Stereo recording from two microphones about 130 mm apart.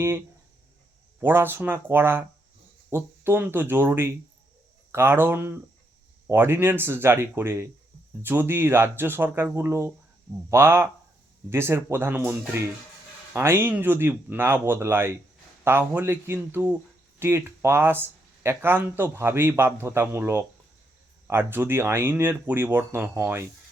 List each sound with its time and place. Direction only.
1.2 s speech: 15° right (ahead or behind)